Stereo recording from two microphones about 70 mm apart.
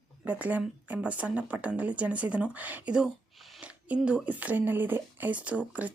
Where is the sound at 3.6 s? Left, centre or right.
Centre.